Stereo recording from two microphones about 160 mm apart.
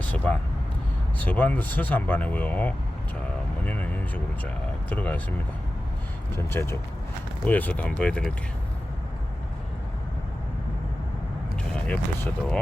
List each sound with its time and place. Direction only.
0.0 s vehicle: 10° left (ahead or behind)
1.2 s speech: 10° left (ahead or behind)
6.5 s speech: 15° left (ahead or behind)
11.5 s speech: 5° left (ahead or behind)